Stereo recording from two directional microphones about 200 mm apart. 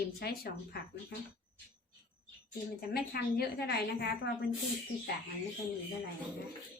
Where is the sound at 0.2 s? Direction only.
50° left (ahead or behind).